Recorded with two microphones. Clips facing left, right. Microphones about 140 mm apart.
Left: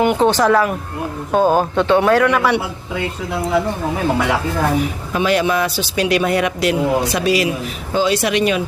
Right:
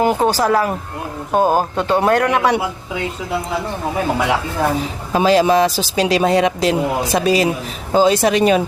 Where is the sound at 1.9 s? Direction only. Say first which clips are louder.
Left 1 dB; 35° right (ahead or behind).